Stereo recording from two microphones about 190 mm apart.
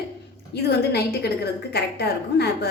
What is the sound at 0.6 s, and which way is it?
A woman's voice, 60° left (ahead or behind).